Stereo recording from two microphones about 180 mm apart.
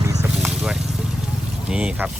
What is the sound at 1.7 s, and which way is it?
Speech, 5° right (ahead or behind).